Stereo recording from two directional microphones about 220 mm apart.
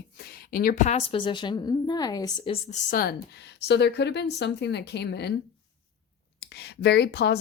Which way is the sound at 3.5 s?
50° left (ahead or behind).